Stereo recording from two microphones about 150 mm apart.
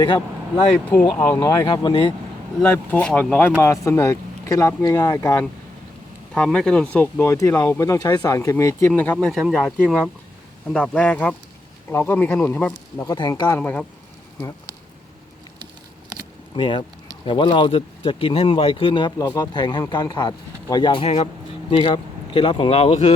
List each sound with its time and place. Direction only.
1.1 s speech: 15° left (ahead or behind)
1.6 s speech: 30° left (ahead or behind)
2.6 s speech: 10° left (ahead or behind)
6.3 s speech: 5° left (ahead or behind)
9.1 s speech: 5° left (ahead or behind)
13.1 s speech: 30° left (ahead or behind)
13.6 s speech: 10° left (ahead or behind)
16.6 s speech: 35° left (ahead or behind)